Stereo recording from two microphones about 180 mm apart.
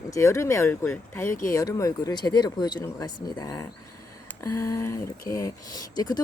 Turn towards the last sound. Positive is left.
turn(degrees=20)  # may be behind; listen again after turning